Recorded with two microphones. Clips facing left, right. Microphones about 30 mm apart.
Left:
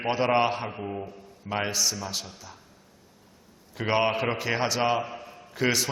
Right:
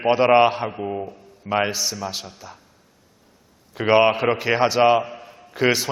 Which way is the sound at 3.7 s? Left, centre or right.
Right.